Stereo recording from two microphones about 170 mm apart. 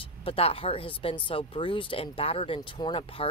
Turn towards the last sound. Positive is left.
turn(degrees=30)  # may be behind; listen again after turning